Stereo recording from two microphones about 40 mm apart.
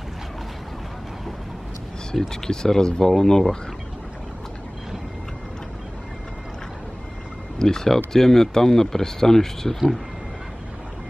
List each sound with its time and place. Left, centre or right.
2.1 s speech: centre
7.5 s speech: centre